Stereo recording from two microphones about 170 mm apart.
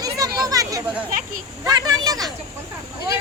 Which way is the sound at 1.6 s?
20° right (ahead or behind).